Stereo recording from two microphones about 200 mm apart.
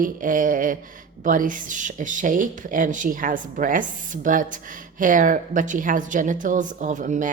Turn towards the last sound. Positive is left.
turn(degrees=-40)  # may be behind; listen again after turning